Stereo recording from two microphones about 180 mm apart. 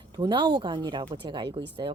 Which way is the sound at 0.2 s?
25° right (ahead or behind).